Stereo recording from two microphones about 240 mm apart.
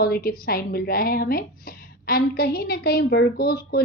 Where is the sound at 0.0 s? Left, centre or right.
Left.